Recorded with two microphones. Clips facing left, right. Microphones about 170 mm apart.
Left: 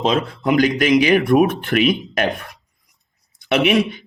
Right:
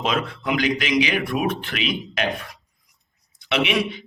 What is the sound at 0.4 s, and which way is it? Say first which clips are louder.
A man's voice: left 8 dB; 45° left (ahead or behind).